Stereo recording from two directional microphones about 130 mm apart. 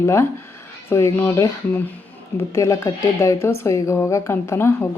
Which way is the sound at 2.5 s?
25° left (ahead or behind).